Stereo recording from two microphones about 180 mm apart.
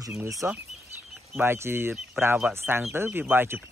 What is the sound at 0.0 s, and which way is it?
Speech, 15° right (ahead or behind).